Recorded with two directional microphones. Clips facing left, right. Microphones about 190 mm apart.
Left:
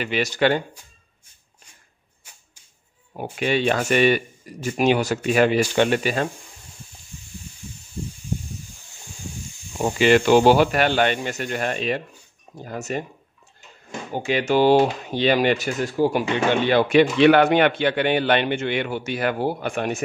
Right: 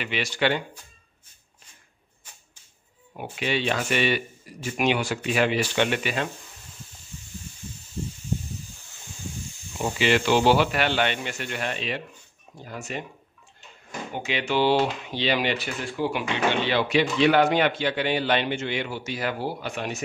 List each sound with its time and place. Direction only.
0.0 s speech: 40° left (ahead or behind)
3.2 s speech: 45° left (ahead or behind)
9.8 s speech: 50° left (ahead or behind)
14.1 s speech: 45° left (ahead or behind)